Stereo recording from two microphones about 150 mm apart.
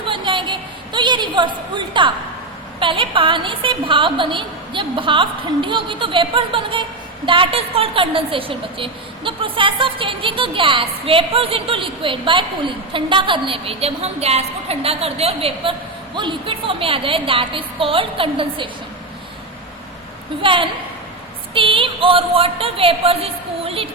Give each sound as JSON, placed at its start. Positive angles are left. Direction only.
{"t": 0.1, "sound": "a sound", "side_deg": -30}
{"t": 2.8, "sound": "a woman's voice", "side_deg": -35}
{"t": 20.4, "sound": "a woman's voice", "side_deg": -35}